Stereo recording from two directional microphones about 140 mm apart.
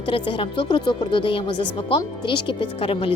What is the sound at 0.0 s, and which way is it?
Speech, 40° left (ahead or behind).